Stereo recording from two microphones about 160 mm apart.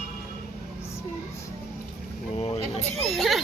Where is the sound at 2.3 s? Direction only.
40° left (ahead or behind).